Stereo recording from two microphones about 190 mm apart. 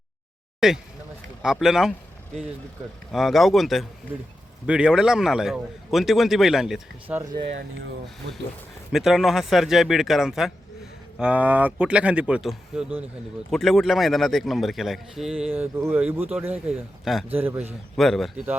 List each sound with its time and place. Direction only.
0.6 s speech: centre (ahead or behind)
3.1 s speech: centre (ahead or behind)
7.2 s speech: 20° right (ahead or behind)
8.9 s speech: centre (ahead or behind)
17.9 s speech: centre (ahead or behind)